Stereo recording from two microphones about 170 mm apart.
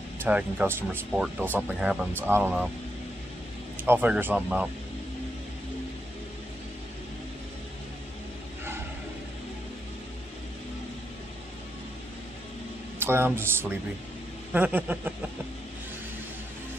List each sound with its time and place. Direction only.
0.2 s speech: 10° right (ahead or behind)
3.8 s speech: 10° right (ahead or behind)
13.0 s speech: 15° right (ahead or behind)